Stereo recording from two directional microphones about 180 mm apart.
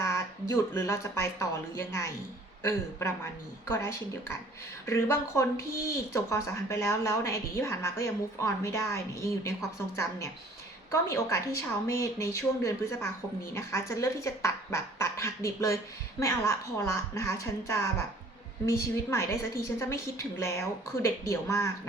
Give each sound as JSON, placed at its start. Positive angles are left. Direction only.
{"t": 0.0, "sound": "speech", "side_deg": 15}
{"t": 3.7, "sound": "a woman's voice", "side_deg": 15}